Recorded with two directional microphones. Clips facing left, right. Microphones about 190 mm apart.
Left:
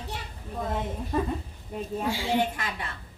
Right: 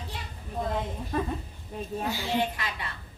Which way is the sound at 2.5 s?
45° left (ahead or behind).